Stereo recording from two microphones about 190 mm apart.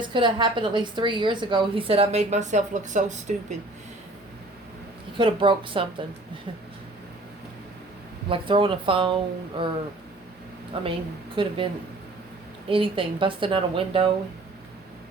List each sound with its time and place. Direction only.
0.0 s a woman's voice: 25° right (ahead or behind)
5.1 s a woman's voice: 25° right (ahead or behind)
8.3 s a woman's voice: 25° right (ahead or behind)
10.7 s a woman's voice: 30° right (ahead or behind)
12.7 s a woman's voice: 30° right (ahead or behind)